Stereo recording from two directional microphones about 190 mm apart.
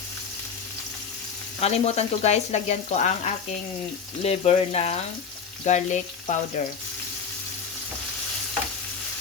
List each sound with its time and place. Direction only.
1.6 s speech: 35° left (ahead or behind)
6.6 s water tap: 45° left (ahead or behind)